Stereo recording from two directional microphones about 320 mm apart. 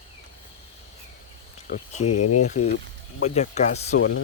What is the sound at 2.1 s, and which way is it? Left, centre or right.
Speech, left.